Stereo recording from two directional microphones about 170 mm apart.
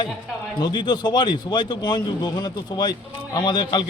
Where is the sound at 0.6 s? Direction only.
25° left (ahead or behind).